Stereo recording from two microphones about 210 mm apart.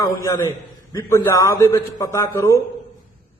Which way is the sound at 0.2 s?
15° left (ahead or behind).